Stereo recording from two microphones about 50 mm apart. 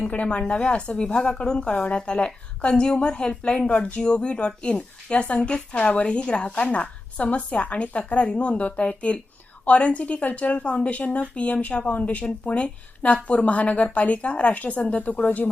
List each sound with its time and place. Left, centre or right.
0.0 s a woman's voice: left